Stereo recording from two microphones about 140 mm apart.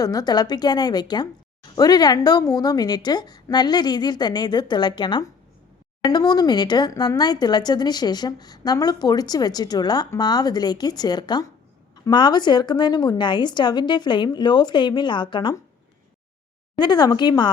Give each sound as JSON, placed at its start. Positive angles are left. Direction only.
{"t": 0.0, "sound": "a woman's voice", "side_deg": 30}
{"t": 16.7, "sound": "a woman's voice", "side_deg": 30}